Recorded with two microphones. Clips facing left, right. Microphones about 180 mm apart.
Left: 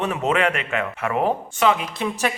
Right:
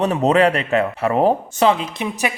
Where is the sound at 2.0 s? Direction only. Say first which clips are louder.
Right 1 dB; 15° right (ahead or behind).